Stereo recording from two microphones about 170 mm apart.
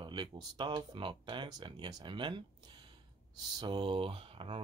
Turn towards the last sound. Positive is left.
turn(degrees=-30)  # may be behind; listen again after turning